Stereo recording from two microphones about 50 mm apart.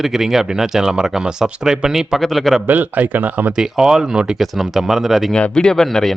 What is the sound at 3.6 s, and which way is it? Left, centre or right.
Speech, centre.